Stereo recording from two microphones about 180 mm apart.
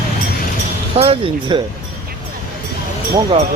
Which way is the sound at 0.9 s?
35° right (ahead or behind).